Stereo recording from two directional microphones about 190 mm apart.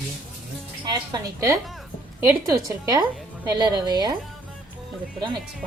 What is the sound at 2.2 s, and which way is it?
A woman's voice, 15° right (ahead or behind).